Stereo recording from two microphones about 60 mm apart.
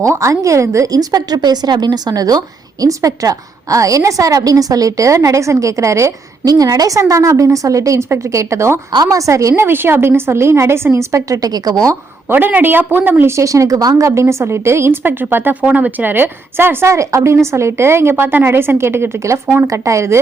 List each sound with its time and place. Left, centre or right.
0.0 s a woman's voice: right
2.8 s a woman's voice: right
6.4 s a woman's voice: right
9.6 s speech: right
10.9 s a woman's voice: right
12.3 s a woman's voice: right
13.3 s a woman's voice: right
14.2 s speech: right
15.6 s a woman's voice: right
16.8 s a woman's voice: right